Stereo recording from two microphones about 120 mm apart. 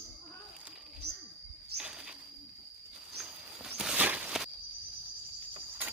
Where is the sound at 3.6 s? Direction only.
5° right (ahead or behind).